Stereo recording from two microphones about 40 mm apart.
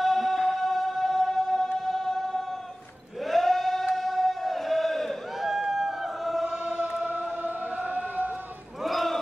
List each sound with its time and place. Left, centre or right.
0.0 s music: centre
3.3 s a sound: centre
3.9 s crowd: centre
6.4 s choir: right
7.1 s music: right
7.8 s siren: right
8.8 s a sound: centre